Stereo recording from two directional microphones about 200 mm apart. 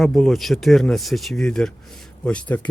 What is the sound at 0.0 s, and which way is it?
Speech, centre (ahead or behind).